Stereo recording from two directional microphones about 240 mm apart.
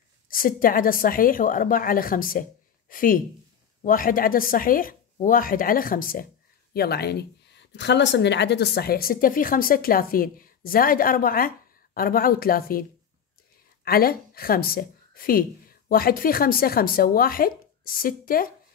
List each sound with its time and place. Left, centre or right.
0.3 s speech: left
13.8 s speech: left